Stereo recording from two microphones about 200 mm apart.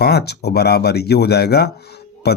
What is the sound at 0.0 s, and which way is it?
Speech, 55° left (ahead or behind).